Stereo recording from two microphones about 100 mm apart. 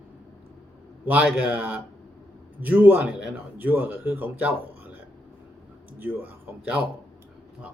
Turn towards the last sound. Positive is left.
turn(degrees=-15)  # may be behind; listen again after turning